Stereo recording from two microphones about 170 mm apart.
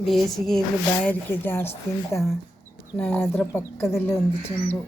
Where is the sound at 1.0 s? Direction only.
10° left (ahead or behind).